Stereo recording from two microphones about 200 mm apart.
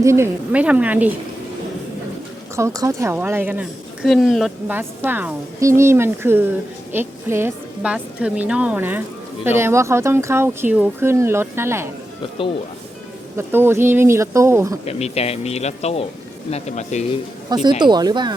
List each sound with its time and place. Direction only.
0.0 s a woman's voice: 15° right (ahead or behind)
2.6 s a woman's voice: 15° right (ahead or behind); by 4.5 s centre (ahead or behind)
4.7 s a woman's voice: 10° right (ahead or behind)
13.3 s a woman's voice: 10° right (ahead or behind)
14.8 s speech: 30° left (ahead or behind)
17.5 s speech: 20° right (ahead or behind)